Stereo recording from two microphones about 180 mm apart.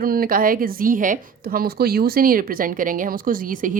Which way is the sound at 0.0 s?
55° right (ahead or behind).